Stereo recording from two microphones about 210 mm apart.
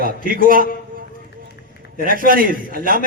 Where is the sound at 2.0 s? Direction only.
40° right (ahead or behind).